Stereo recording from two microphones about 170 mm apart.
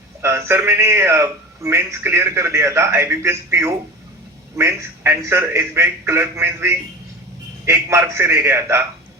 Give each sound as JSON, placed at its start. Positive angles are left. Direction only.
{"t": 0.2, "sound": "a man's voice", "side_deg": -15}